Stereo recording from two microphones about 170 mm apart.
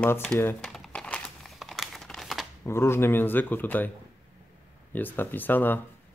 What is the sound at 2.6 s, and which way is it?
Speech, 15° left (ahead or behind).